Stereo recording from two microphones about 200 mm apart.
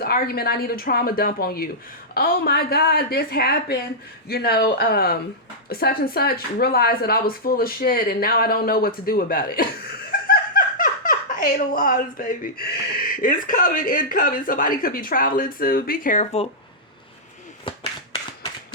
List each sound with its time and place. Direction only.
0.0 s speech: 50° left (ahead or behind); by 16.5 s 35° left (ahead or behind)